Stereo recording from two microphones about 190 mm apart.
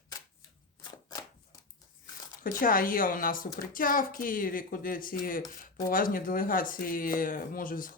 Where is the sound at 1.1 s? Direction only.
20° left (ahead or behind).